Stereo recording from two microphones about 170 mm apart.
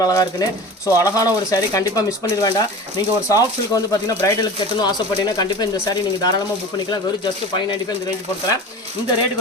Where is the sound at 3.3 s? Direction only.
20° left (ahead or behind).